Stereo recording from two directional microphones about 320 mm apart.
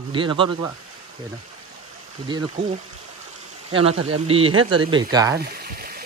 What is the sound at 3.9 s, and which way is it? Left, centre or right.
Speech, right.